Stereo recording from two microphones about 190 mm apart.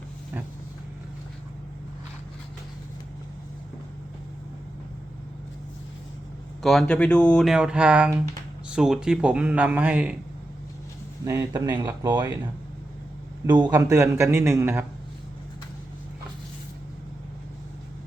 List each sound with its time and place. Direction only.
6.6 s speech: centre (ahead or behind)
11.3 s speech: 20° right (ahead or behind)
13.7 s speech: 15° right (ahead or behind)